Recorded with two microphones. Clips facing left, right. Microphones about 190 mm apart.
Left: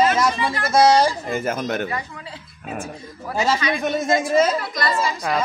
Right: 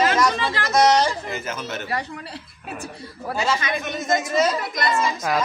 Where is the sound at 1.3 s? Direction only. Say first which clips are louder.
Left 6 dB; 50° left (ahead or behind).